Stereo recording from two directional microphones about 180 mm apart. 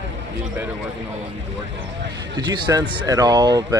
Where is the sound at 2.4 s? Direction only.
20° right (ahead or behind).